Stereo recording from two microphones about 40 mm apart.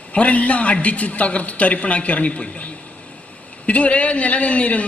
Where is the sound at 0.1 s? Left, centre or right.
Left.